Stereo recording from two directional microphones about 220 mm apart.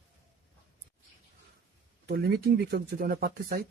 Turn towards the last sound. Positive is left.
turn(degrees=-45)  # may be behind; listen again after turning